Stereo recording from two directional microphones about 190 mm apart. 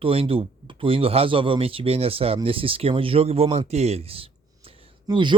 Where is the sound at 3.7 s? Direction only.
35° right (ahead or behind).